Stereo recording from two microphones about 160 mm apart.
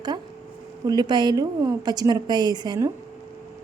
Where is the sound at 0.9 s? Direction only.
25° right (ahead or behind).